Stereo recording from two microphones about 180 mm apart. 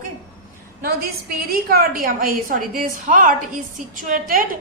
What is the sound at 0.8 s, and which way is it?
A woman's voice, 55° right (ahead or behind).